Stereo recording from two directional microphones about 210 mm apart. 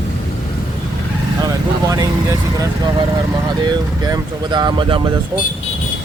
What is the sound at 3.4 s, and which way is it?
Speech, 20° right (ahead or behind).